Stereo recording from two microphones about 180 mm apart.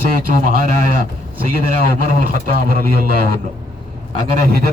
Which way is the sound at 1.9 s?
55° right (ahead or behind).